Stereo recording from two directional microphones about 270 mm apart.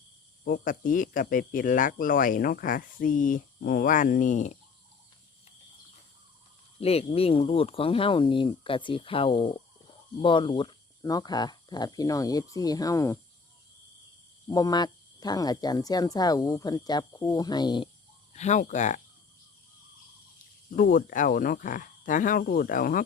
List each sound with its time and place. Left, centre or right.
0.4 s speech: left
6.7 s speech: left
14.4 s speech: centre
20.7 s speech: left